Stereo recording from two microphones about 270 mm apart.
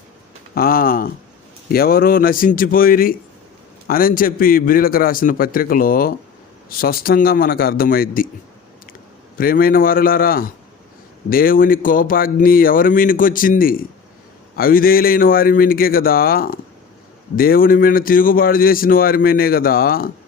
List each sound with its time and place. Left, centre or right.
0.5 s a man's voice: left
9.4 s a man's voice: left